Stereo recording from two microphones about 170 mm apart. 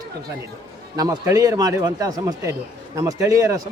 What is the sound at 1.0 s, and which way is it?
A man's voice, 20° right (ahead or behind).